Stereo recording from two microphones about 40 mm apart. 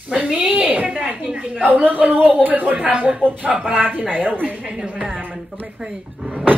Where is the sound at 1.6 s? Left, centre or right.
Right.